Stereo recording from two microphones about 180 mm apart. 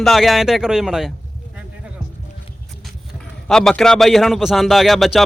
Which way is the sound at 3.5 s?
5° left (ahead or behind).